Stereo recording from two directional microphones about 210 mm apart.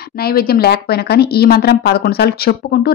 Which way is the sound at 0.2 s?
45° left (ahead or behind).